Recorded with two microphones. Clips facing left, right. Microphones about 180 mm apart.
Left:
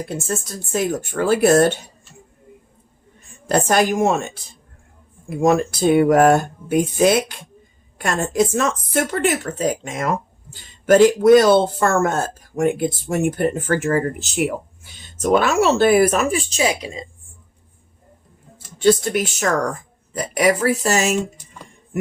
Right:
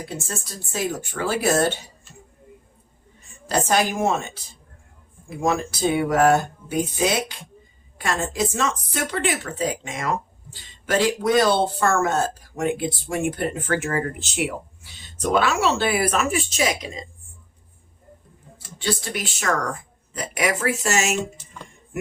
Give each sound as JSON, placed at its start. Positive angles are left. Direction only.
{"t": 0.0, "sound": "speech", "side_deg": 50}
{"t": 3.4, "sound": "a woman's voice", "side_deg": 55}
{"t": 5.3, "sound": "speech", "side_deg": 60}
{"t": 16.3, "sound": "speech", "side_deg": 30}
{"t": 18.8, "sound": "speech", "side_deg": 50}
{"t": 20.3, "sound": "speech", "side_deg": 35}